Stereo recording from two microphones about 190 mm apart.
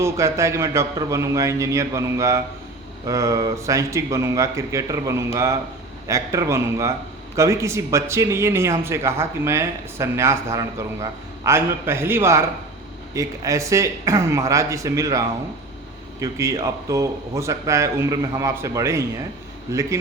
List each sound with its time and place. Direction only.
0.0 s speech: 15° right (ahead or behind)
16.2 s speech: 15° right (ahead or behind)